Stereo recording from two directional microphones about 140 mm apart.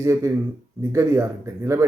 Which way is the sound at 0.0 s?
20° right (ahead or behind).